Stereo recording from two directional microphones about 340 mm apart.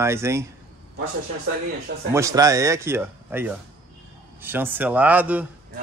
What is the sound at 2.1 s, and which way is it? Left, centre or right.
A man's voice, centre.